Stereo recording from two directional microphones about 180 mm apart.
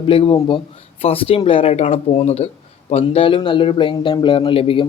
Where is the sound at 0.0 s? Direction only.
30° left (ahead or behind).